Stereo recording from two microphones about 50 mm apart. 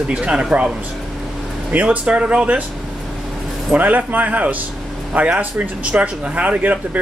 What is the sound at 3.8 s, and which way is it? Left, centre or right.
Speech, right.